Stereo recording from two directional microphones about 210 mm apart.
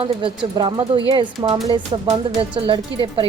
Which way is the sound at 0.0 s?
25° right (ahead or behind).